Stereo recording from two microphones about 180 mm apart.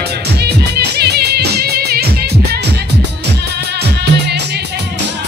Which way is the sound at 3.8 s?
65° right (ahead or behind).